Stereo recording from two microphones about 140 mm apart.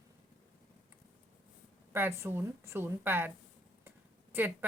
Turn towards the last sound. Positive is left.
turn(degrees=-15)  # may be behind; listen again after turning